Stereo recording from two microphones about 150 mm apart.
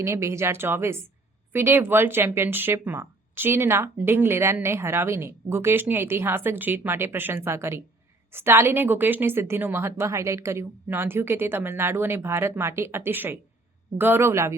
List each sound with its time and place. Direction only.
0.0 s speech: 20° right (ahead or behind)